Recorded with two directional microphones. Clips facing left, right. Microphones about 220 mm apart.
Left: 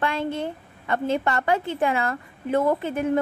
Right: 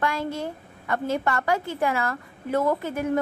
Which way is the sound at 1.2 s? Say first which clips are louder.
Left 2 dB; 20° left (ahead or behind).